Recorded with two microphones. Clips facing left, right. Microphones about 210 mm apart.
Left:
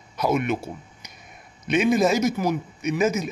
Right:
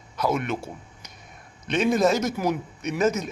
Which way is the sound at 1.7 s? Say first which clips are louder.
Left 1 dB; 10° left (ahead or behind).